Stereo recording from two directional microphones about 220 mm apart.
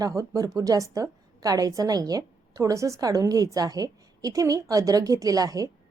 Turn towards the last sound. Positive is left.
turn(degrees=-15)  # may be behind; listen again after turning